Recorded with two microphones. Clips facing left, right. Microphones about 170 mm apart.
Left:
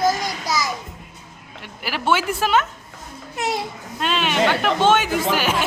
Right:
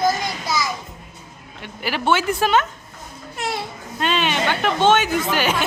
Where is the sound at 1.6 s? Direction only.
5° left (ahead or behind).